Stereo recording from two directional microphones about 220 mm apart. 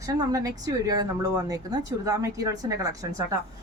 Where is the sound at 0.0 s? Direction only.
15° right (ahead or behind).